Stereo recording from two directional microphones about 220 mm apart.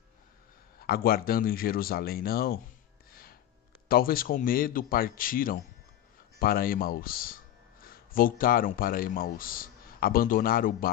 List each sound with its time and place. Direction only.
0.8 s speech: 45° left (ahead or behind)
3.1 s a sound: 40° left (ahead or behind)
3.9 s a man's voice: 40° left (ahead or behind)